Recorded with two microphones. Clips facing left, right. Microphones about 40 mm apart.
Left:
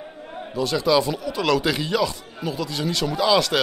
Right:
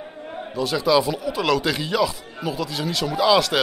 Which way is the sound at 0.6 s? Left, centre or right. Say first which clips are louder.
Even; centre.